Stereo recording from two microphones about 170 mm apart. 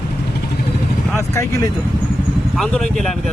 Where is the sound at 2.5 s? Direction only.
5° left (ahead or behind).